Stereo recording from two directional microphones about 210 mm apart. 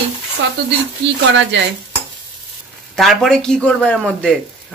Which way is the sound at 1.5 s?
60° right (ahead or behind).